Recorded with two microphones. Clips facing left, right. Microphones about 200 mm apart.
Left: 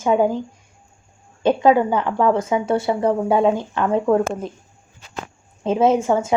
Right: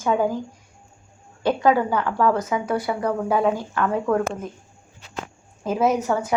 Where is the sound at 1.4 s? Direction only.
20° left (ahead or behind).